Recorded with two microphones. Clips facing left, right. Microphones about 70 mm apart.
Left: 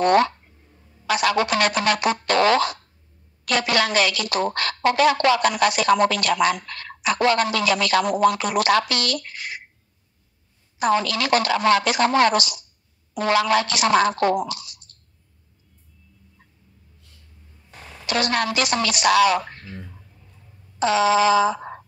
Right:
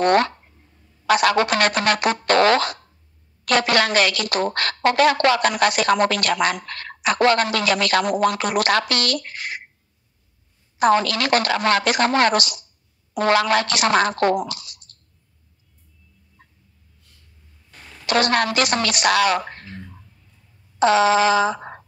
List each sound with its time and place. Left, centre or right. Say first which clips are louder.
0.0 s a woman's voice: even; right
10.8 s a woman's voice: right 3 dB; right
18.0 s a woman's voice: right 3 dB; right
20.8 s a woman's voice: right 2 dB; right